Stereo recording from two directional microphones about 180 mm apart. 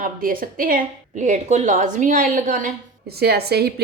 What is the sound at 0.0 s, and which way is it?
A woman's voice, 50° right (ahead or behind).